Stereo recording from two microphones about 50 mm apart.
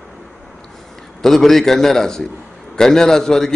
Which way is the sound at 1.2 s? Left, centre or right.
Centre.